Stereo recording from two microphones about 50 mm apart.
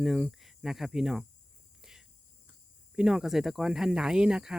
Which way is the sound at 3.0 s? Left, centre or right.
Centre.